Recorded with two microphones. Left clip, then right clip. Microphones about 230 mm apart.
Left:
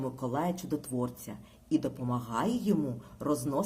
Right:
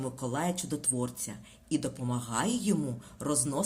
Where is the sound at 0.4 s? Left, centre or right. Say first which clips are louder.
Even; right.